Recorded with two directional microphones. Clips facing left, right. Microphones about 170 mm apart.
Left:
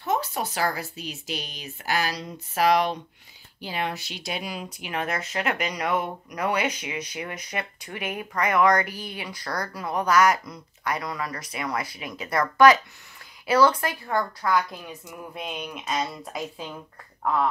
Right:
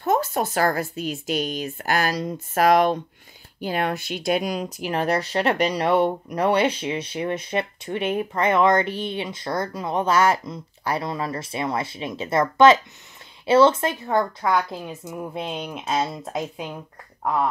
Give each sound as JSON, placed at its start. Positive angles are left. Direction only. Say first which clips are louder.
{"t": 0.0, "sound": "speech", "louder": "right 5 dB", "side_deg": -45}